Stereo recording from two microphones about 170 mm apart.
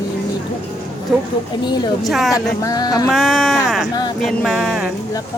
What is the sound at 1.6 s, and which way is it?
Speech, 25° left (ahead or behind).